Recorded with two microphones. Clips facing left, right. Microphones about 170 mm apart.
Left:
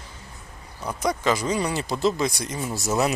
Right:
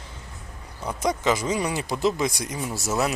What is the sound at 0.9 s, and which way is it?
Speech, 20° right (ahead or behind).